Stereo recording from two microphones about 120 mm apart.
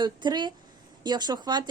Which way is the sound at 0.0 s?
40° right (ahead or behind).